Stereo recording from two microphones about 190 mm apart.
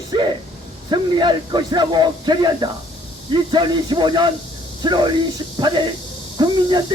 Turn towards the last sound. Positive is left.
turn(degrees=-20)  # may be behind; listen again after turning